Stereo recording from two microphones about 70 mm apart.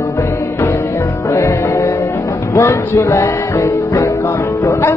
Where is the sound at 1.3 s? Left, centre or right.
Left.